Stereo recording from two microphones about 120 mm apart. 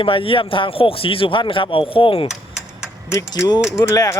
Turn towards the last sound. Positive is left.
turn(degrees=30)  # may be behind; listen again after turning